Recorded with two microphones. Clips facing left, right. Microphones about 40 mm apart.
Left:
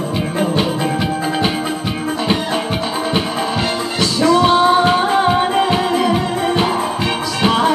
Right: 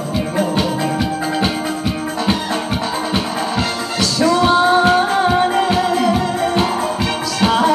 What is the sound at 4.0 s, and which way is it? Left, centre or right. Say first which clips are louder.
Music: left 1 dB; left.